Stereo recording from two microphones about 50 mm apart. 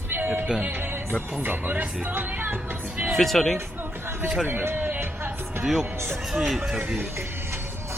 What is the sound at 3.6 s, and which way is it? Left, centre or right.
Music, right.